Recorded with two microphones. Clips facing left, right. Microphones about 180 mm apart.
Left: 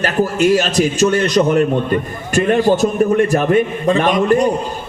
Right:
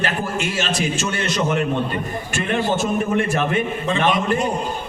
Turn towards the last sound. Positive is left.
turn(degrees=40)  # may be behind; listen again after turning